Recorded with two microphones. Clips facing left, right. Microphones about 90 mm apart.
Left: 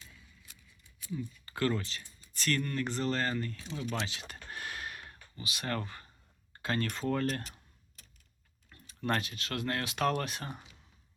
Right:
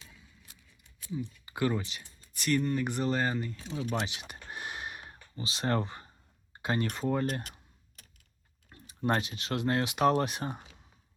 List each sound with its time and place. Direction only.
1.1 s speech: 15° right (ahead or behind)
4.0 s a sound: 20° right (ahead or behind)
6.5 s speech: 20° right (ahead or behind)
8.7 s speech: 20° right (ahead or behind)